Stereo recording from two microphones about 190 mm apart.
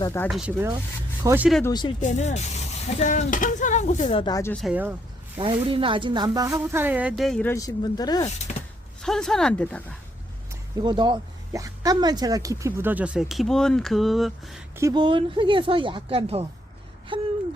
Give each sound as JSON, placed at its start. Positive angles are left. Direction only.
{"t": 0.0, "sound": "speech", "side_deg": 15}
{"t": 0.3, "sound": "speech", "side_deg": 0}
{"t": 1.2, "sound": "speech", "side_deg": -15}
{"t": 1.6, "sound": "speech", "side_deg": 20}
{"t": 2.0, "sound": "speech", "side_deg": 40}
{"t": 4.3, "sound": "speech", "side_deg": 15}
{"t": 4.5, "sound": "speech", "side_deg": -5}
{"t": 5.4, "sound": "speech", "side_deg": -25}
{"t": 7.5, "sound": "speech", "side_deg": 20}
{"t": 9.0, "sound": "speech", "side_deg": 5}
{"t": 10.5, "sound": "speech", "side_deg": -20}
{"t": 14.8, "sound": "speech", "side_deg": -20}